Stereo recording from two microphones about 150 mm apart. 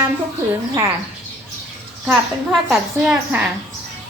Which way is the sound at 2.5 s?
5° right (ahead or behind).